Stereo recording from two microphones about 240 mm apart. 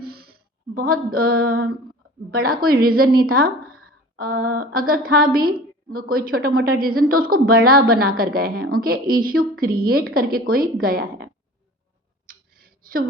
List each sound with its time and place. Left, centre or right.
0.0 s female singing: right
2.3 s a woman's voice: right
12.2 s a sound: right